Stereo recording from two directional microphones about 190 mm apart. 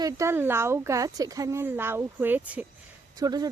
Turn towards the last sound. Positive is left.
turn(degrees=-20)  # may be behind; listen again after turning